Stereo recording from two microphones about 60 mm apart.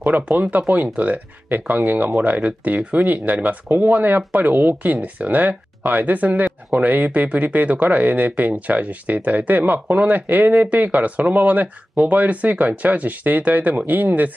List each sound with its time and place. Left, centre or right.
0.0 s speech: right